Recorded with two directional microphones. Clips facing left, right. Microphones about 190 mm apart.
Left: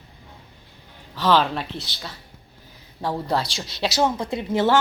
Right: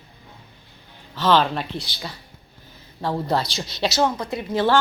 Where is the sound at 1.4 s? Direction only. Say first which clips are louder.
Right 1 dB; centre (ahead or behind).